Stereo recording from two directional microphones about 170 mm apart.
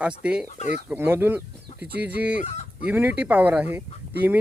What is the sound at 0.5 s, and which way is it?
Speech, 45° left (ahead or behind).